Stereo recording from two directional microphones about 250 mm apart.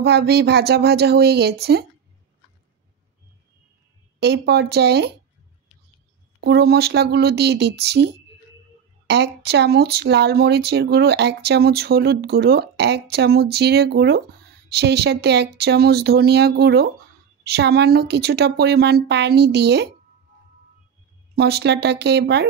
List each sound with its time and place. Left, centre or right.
0.0 s speech: right
4.2 s speech: right
6.4 s speech: right
21.4 s speech: right